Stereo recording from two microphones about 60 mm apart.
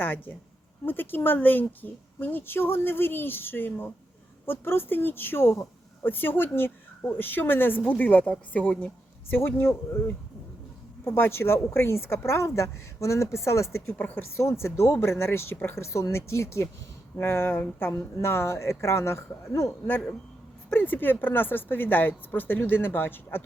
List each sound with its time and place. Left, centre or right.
0.0 s a woman's voice: left
9.3 s a woman's voice: left
14.0 s a woman's voice: left
14.3 s a woman's voice: left
17.2 s a woman's voice: left
20.7 s a woman's voice: left